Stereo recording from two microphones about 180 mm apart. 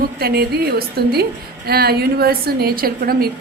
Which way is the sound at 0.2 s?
60° right (ahead or behind).